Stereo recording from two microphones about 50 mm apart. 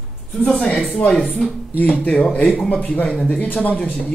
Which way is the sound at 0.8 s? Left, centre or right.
Centre.